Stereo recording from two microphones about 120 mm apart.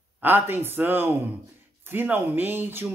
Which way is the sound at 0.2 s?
15° right (ahead or behind).